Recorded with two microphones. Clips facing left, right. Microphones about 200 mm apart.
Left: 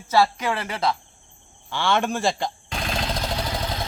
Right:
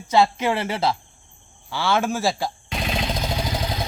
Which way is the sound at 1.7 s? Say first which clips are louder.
Right 1 dB; 5° right (ahead or behind).